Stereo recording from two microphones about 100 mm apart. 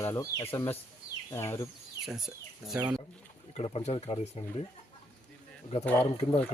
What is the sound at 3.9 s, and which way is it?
Speech, 55° left (ahead or behind).